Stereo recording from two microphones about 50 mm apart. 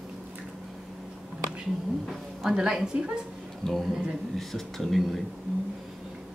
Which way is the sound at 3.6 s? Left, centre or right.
Centre.